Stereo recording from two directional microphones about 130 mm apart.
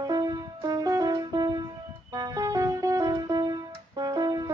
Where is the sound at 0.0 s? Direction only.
30° right (ahead or behind).